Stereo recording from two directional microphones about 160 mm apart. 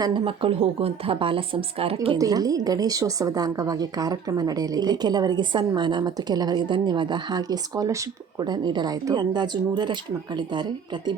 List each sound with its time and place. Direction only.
0.0 s a woman's voice: 30° right (ahead or behind)
2.1 s a woman's voice: 25° right (ahead or behind)